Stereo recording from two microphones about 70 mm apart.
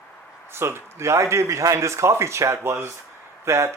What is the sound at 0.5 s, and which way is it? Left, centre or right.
Speech, right.